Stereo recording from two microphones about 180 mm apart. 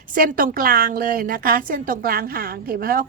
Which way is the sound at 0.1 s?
50° right (ahead or behind).